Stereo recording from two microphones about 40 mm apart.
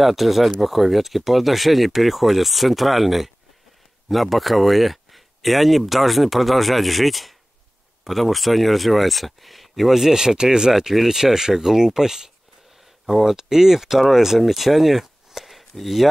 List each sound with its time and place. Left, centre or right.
0.0 s speech: centre
10.7 s speech: centre